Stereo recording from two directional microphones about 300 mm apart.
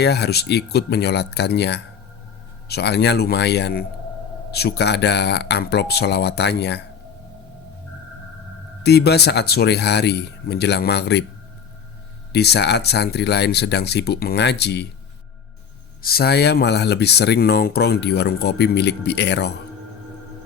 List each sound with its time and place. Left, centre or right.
0.0 s speech: left
8.8 s speech: left
12.3 s speech: left
16.0 s speech: left